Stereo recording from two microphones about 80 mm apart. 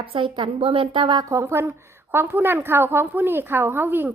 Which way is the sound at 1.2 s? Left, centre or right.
Right.